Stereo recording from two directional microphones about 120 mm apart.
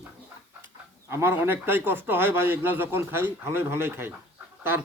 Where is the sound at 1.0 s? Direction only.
20° right (ahead or behind).